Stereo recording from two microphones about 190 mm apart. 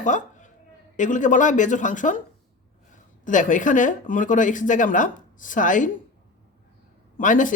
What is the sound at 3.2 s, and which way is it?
Speech, 45° left (ahead or behind).